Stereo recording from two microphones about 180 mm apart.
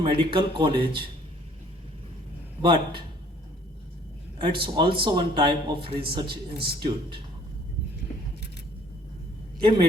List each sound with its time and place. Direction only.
0.0 s a man's voice: 30° right (ahead or behind)
2.6 s a man's voice: 25° right (ahead or behind)
4.4 s a man's voice: 30° right (ahead or behind)
9.6 s a man's voice: 25° right (ahead or behind)